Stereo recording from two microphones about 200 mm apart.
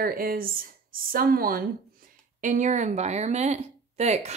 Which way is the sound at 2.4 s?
35° right (ahead or behind).